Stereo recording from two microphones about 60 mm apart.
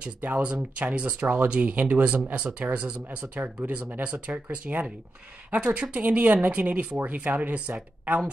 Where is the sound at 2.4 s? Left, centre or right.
Centre.